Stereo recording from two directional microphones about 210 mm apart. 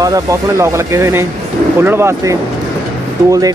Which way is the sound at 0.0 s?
15° right (ahead or behind).